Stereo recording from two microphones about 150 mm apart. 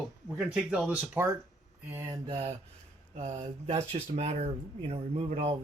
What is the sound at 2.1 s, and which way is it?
Mantra, 35° right (ahead or behind).